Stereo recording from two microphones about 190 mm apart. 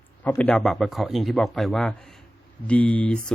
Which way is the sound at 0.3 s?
5° left (ahead or behind).